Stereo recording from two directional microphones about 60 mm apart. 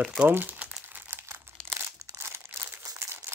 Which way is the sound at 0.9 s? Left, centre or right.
Right.